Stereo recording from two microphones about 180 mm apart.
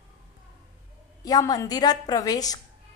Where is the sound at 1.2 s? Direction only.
20° left (ahead or behind).